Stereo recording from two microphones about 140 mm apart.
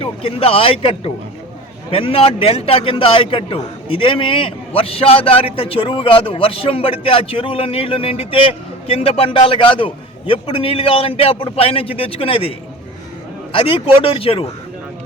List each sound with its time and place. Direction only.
0.0 s a man's voice: 40° left (ahead or behind)